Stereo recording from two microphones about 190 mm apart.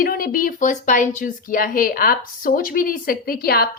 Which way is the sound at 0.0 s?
50° left (ahead or behind).